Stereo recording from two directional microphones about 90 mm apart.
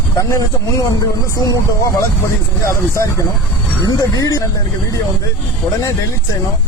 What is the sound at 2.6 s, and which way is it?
Speech, 35° left (ahead or behind).